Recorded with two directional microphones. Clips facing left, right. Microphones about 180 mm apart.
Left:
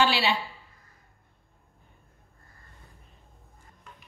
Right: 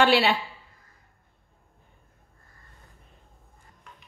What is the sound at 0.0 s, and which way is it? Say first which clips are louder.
Speech: right 4 dB; 55° right (ahead or behind).